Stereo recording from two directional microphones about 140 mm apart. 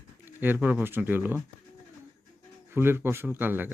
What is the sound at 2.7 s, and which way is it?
Speech, 15° right (ahead or behind).